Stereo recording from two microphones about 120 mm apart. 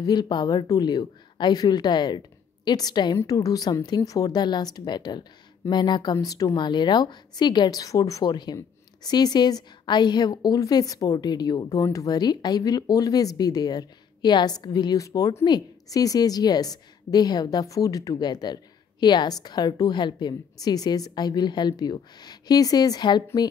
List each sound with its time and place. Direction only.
0.0 s a woman's voice: 35° left (ahead or behind)